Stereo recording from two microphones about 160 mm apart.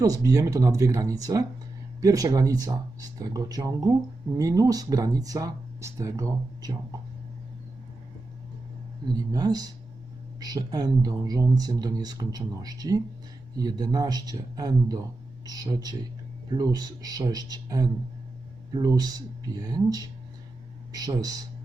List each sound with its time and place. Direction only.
0.0 s speech: 20° right (ahead or behind)
9.3 s speech: 25° right (ahead or behind)